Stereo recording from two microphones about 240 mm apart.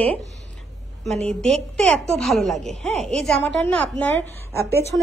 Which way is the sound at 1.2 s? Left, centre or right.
Centre.